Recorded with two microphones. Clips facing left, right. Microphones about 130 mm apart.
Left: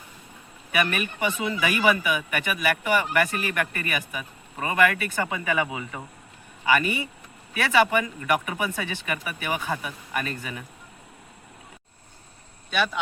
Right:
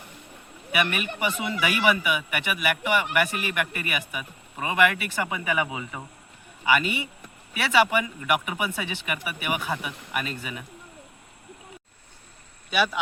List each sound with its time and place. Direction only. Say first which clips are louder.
0.8 s a man's voice: left 1 dB; 20° right (ahead or behind)
12.7 s a man's voice: right 1 dB; 5° right (ahead or behind)